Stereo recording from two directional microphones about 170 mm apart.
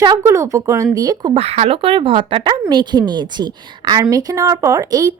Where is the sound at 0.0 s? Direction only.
20° right (ahead or behind).